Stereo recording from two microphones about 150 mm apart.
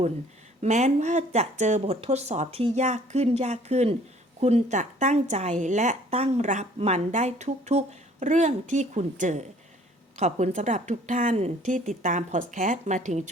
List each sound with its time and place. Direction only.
0.6 s a woman's voice: 50° right (ahead or behind)